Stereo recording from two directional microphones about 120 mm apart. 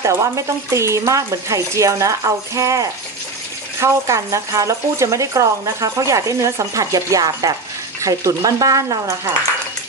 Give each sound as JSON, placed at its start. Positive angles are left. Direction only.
{"t": 0.0, "sound": "speech", "side_deg": -25}